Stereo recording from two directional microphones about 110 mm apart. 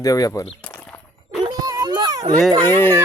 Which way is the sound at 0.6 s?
10° left (ahead or behind).